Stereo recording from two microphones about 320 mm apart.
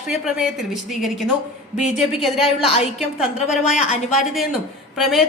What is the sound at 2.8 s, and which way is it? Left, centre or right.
Speech, left.